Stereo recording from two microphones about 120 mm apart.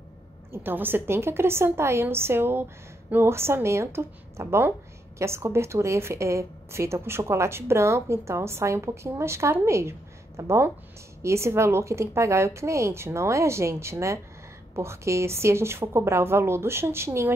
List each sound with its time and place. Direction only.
0.5 s a woman's voice: 15° right (ahead or behind)